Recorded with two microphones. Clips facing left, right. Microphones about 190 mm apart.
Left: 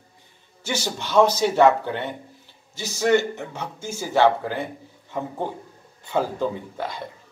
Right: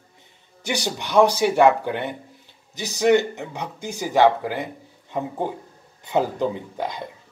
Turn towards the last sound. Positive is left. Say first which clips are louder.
# right 2 dB
turn(degrees=-15)  # may be behind; listen again after turning